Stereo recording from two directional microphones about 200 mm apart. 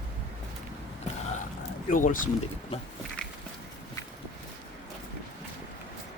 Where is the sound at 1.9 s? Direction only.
40° left (ahead or behind).